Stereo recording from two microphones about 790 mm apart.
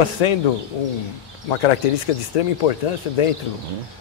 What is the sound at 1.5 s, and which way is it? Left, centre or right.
A man's voice, left.